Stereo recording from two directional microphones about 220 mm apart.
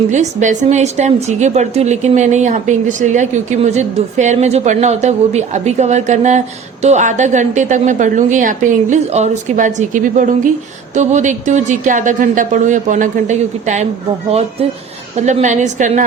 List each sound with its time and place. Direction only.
0.1 s a woman's voice: 35° right (ahead or behind)
15.1 s a woman's voice: 30° right (ahead or behind)